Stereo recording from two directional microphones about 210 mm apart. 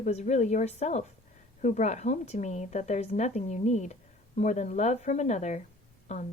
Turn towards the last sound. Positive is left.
turn(degrees=35)  # may be behind; listen again after turning